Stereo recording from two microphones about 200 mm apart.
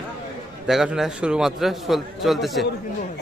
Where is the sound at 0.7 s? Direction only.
Centre (ahead or behind).